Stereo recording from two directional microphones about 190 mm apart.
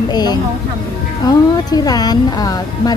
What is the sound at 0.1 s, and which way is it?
A woman's voice, 20° left (ahead or behind).